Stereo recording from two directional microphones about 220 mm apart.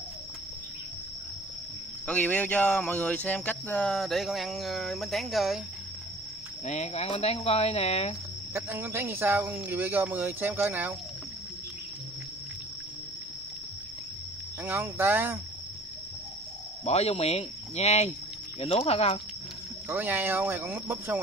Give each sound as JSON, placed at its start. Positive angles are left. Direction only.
{"t": 2.0, "sound": "speech", "side_deg": 5}
{"t": 6.6, "sound": "speech", "side_deg": 30}
{"t": 8.5, "sound": "speech", "side_deg": -10}
{"t": 14.6, "sound": "speech", "side_deg": -10}
{"t": 16.8, "sound": "speech", "side_deg": 30}
{"t": 19.9, "sound": "speech", "side_deg": -10}